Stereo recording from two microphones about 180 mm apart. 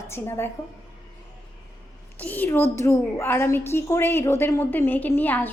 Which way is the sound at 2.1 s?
10° left (ahead or behind).